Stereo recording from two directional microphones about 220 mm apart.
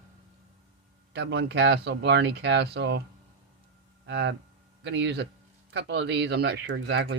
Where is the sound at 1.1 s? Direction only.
50° right (ahead or behind).